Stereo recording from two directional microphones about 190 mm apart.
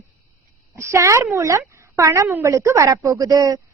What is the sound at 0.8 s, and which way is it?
A woman's voice, 15° right (ahead or behind).